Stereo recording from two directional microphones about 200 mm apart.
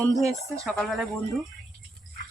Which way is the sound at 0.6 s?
Centre (ahead or behind).